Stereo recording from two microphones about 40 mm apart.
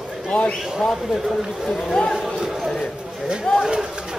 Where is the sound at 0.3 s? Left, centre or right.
Left.